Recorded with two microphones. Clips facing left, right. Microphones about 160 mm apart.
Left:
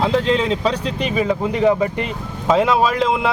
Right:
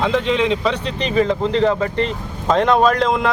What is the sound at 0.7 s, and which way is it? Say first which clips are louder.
Speech: left 1 dB; 10° left (ahead or behind).